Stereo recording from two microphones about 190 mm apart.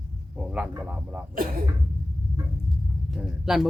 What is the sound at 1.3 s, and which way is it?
Speech, 50° right (ahead or behind).